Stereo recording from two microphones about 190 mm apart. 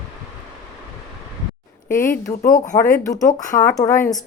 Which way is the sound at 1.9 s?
45° left (ahead or behind).